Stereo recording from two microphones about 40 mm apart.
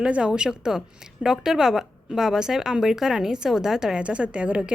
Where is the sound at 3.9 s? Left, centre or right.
Right.